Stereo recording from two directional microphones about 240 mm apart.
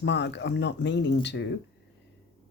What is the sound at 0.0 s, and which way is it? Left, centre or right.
Speech, left.